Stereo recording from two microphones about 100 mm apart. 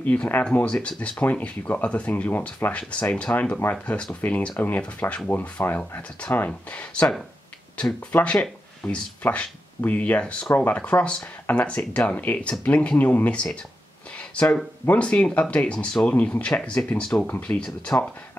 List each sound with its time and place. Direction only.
0.0 s speech: 15° left (ahead or behind)